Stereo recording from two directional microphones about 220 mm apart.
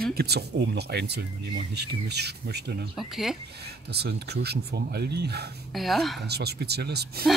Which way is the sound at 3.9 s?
45° right (ahead or behind).